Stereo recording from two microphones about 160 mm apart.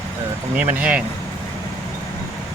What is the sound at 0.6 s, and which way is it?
Speech, 10° right (ahead or behind).